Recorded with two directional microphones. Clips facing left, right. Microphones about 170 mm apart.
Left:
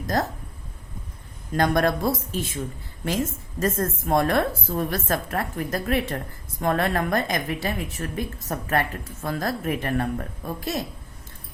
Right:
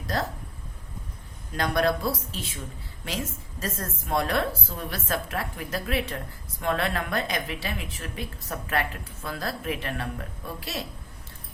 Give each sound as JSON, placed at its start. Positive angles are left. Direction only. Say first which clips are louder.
{"t": 1.5, "sound": "a woman's voice", "louder": "left 3 dB", "side_deg": 50}
{"t": 3.6, "sound": "a woman's voice", "louder": "left 9 dB", "side_deg": 45}